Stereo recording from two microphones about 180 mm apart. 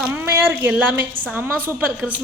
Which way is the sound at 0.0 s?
10° right (ahead or behind).